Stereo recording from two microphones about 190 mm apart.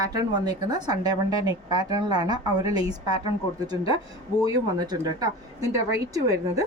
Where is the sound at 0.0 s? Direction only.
20° right (ahead or behind).